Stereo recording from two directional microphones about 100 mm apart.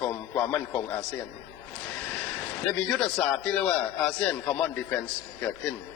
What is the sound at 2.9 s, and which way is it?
A man's voice, 10° left (ahead or behind).